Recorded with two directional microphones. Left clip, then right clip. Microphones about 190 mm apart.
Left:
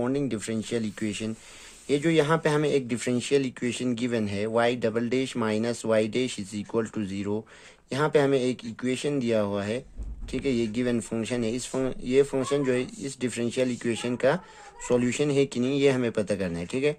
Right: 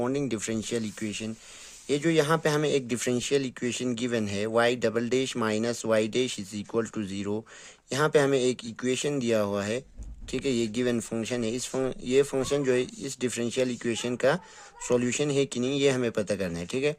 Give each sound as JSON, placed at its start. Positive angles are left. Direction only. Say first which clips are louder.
{"t": 0.0, "sound": "speech", "louder": "left 1 dB", "side_deg": -30}